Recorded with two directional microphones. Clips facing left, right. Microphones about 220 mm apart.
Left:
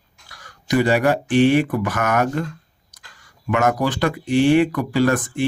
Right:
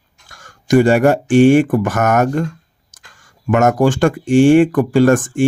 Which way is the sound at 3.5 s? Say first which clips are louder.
Right 6 dB; 45° right (ahead or behind).